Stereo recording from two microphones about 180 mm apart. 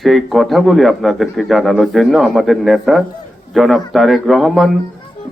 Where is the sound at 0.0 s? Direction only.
Centre (ahead or behind).